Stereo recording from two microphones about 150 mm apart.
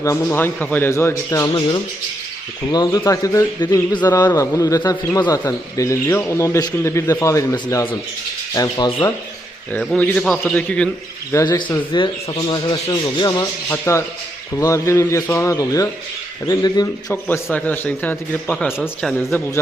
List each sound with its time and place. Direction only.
0.0 s a man's voice: 15° left (ahead or behind)
2.7 s speech: 25° left (ahead or behind)
9.7 s a man's voice: 10° left (ahead or behind)
11.3 s speech: 25° left (ahead or behind)
17.1 s a man's voice: 10° left (ahead or behind)